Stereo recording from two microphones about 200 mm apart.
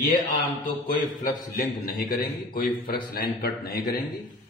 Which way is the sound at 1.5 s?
45° left (ahead or behind).